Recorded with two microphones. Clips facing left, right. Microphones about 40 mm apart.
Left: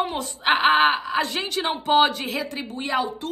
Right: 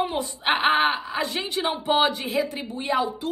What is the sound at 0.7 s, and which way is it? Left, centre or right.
A woman's voice, left.